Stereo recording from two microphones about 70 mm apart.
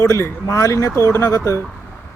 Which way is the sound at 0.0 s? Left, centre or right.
Left.